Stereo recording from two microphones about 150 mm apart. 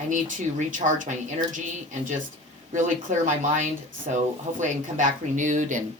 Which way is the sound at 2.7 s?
55° right (ahead or behind).